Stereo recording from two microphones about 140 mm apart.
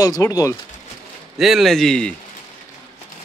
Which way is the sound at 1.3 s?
Centre (ahead or behind).